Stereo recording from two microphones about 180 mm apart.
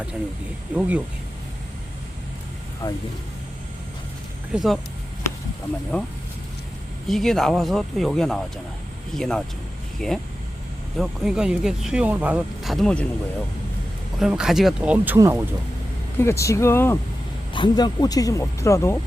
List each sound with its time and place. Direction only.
0.8 s speech: 5° right (ahead or behind)
2.8 s speech: 15° left (ahead or behind)
4.5 s speech: centre (ahead or behind)
7.1 s speech: centre (ahead or behind)
14.2 s speech: 5° right (ahead or behind)
16.1 s speech: 15° left (ahead or behind)
17.5 s speech: 25° left (ahead or behind)